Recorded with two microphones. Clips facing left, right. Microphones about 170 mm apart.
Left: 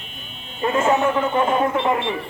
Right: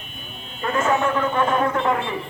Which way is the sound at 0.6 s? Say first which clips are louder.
Left 3 dB; 25° left (ahead or behind).